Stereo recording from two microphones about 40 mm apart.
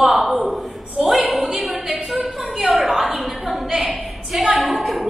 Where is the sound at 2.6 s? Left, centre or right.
Centre.